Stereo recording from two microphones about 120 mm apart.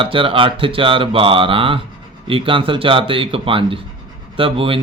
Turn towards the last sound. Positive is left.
turn(degrees=-50)  # may be behind; listen again after turning